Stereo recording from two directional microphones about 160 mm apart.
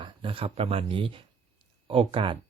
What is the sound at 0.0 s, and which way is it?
Speech, 30° right (ahead or behind).